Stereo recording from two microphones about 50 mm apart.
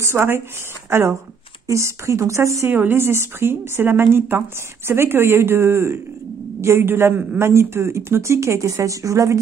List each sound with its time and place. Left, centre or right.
0.0 s speech: right
0.8 s speech: right
1.7 s a woman's voice: right
2.9 s speech: right